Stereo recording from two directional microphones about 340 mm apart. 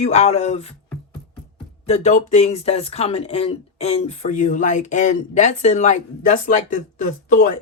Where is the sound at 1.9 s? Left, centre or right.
Centre.